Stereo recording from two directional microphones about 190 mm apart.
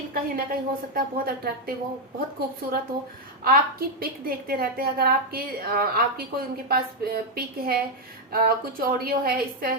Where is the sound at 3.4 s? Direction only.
55° right (ahead or behind).